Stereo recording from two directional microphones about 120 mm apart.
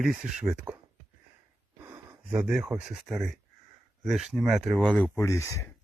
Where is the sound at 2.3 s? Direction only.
10° right (ahead or behind).